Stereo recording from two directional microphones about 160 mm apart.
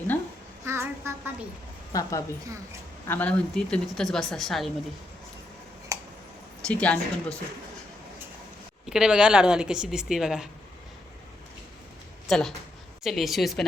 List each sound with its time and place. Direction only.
0.6 s a sound: 15° right (ahead or behind)
1.9 s a woman's voice: 20° left (ahead or behind)
3.1 s a woman's voice: 10° left (ahead or behind)
5.9 s tick: 20° right (ahead or behind)
6.7 s a woman's voice: 10° left (ahead or behind)
8.9 s a woman's voice: 5° right (ahead or behind)
12.3 s a woman's voice: centre (ahead or behind)